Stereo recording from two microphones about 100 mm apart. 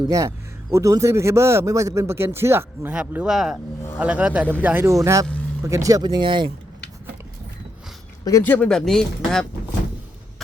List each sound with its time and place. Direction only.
0.1 s a man's voice: 30° right (ahead or behind)
2.9 s a man's voice: 10° right (ahead or behind)
4.9 s a man's voice: 30° right (ahead or behind); by 6.5 s 50° right (ahead or behind)
8.2 s speech: 35° left (ahead or behind)
8.4 s speech: 10° left (ahead or behind)